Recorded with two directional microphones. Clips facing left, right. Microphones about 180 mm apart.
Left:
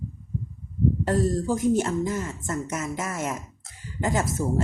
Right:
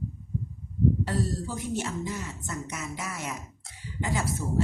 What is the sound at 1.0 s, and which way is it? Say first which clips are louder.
Speech: left 7 dB; 45° left (ahead or behind).